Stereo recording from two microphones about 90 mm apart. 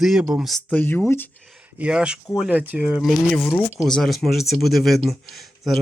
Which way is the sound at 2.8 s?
5° right (ahead or behind).